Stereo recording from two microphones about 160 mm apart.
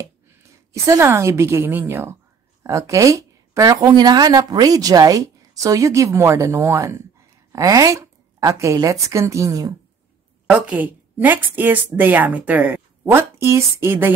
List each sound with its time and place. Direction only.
0.8 s a woman's voice: 15° right (ahead or behind)
10.5 s a woman's voice: 10° right (ahead or behind)